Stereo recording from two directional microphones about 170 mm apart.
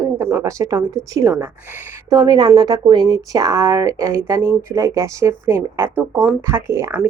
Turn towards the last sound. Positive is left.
turn(degrees=-15)  # may be behind; listen again after turning